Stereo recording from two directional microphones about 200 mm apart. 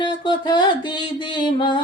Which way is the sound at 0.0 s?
20° left (ahead or behind).